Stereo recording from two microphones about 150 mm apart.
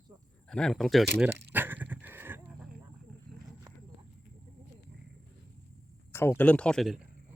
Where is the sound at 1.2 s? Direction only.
10° right (ahead or behind).